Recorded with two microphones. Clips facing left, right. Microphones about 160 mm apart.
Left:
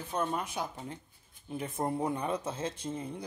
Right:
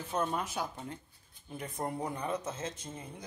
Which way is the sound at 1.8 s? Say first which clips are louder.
Left 4 dB; 25° left (ahead or behind).